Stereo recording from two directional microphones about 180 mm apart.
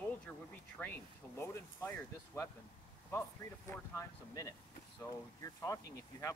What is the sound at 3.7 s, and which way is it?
Speech, 15° left (ahead or behind).